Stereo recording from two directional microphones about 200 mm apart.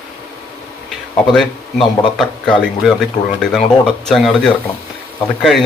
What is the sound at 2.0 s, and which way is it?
Speech, 5° left (ahead or behind).